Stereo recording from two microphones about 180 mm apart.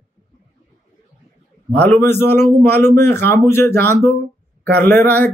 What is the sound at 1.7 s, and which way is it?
A man's voice, 5° left (ahead or behind).